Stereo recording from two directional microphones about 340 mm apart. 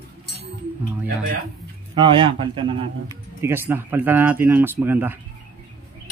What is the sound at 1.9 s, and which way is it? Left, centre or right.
Speech, centre.